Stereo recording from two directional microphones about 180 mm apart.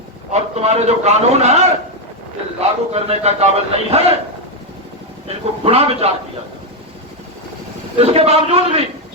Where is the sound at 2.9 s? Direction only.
35° right (ahead or behind).